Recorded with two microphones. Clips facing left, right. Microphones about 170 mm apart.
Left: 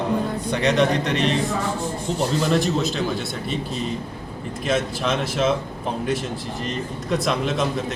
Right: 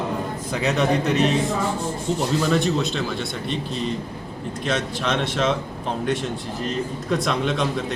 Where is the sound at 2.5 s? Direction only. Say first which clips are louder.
Even; centre (ahead or behind).